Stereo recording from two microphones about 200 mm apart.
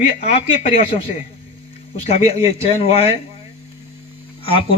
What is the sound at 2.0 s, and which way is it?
Speech, 30° left (ahead or behind).